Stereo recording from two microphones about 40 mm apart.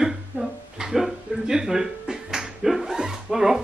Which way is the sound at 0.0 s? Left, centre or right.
Centre.